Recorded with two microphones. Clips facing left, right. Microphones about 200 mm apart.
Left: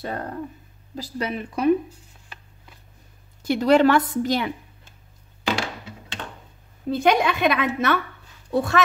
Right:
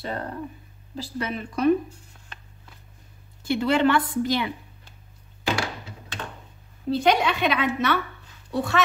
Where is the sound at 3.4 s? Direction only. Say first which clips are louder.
Left 4 dB; 40° left (ahead or behind).